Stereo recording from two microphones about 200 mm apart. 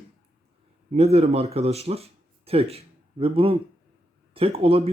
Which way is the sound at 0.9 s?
30° right (ahead or behind).